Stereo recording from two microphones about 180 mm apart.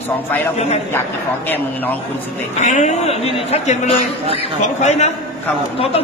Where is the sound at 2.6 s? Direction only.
40° left (ahead or behind).